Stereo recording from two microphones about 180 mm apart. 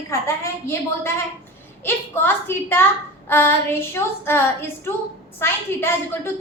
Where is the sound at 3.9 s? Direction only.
10° left (ahead or behind).